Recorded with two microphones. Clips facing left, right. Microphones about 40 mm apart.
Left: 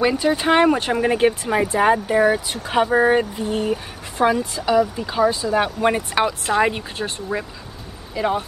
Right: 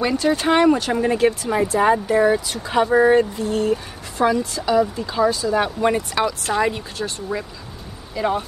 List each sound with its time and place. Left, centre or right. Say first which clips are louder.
0.0 s speech: left 1 dB; centre
0.7 s speech: even; left
8.1 s speech: even; centre